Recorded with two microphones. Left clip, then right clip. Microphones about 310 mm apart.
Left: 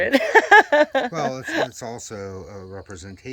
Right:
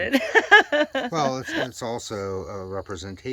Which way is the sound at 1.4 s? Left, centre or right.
Centre.